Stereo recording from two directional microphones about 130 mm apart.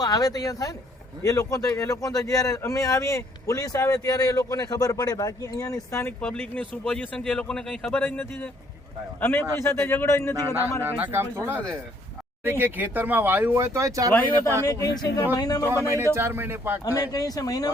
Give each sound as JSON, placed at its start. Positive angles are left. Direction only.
{"t": 0.0, "sound": "a man's voice", "side_deg": 30}
{"t": 10.8, "sound": "speech", "side_deg": -15}
{"t": 14.7, "sound": "speech", "side_deg": 25}
{"t": 15.6, "sound": "speech", "side_deg": -20}
{"t": 17.1, "sound": "speech", "side_deg": 30}